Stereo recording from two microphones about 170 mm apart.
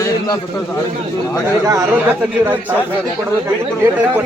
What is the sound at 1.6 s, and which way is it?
Speech, 20° right (ahead or behind).